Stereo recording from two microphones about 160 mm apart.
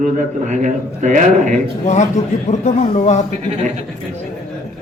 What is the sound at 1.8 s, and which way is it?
Speech, 45° left (ahead or behind).